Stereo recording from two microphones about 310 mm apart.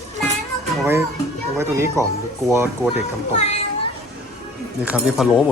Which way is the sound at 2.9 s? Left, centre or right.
Left.